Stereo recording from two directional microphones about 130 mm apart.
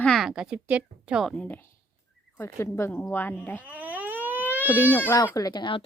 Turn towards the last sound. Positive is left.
turn(degrees=40)  # may be behind; listen again after turning